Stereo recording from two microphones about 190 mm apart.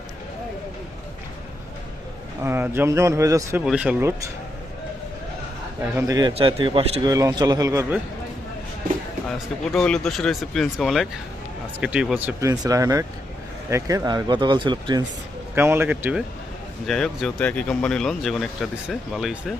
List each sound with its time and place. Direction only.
2.4 s speech: 10° right (ahead or behind)
5.8 s speech: 10° right (ahead or behind); by 7.1 s 30° right (ahead or behind)
7.1 s speech: 15° right (ahead or behind)
9.7 s speech: 5° left (ahead or behind); by 15.0 s 25° right (ahead or behind)
15.5 s speech: 10° right (ahead or behind)
16.8 s speech: centre (ahead or behind)